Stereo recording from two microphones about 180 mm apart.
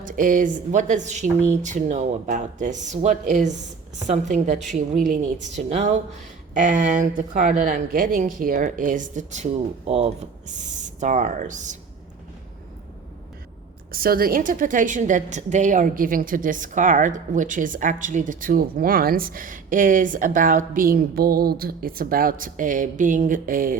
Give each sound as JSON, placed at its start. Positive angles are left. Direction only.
{"t": 0.0, "sound": "a woman's voice", "side_deg": -45}
{"t": 13.9, "sound": "a woman's voice", "side_deg": -55}